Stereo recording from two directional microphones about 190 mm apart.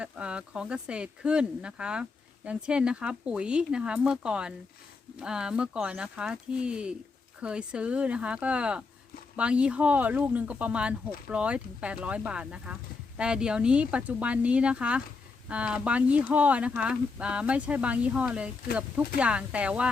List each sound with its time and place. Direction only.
0.0 s speech: 5° right (ahead or behind)